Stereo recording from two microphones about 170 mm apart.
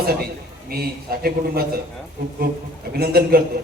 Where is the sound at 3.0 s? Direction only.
65° right (ahead or behind).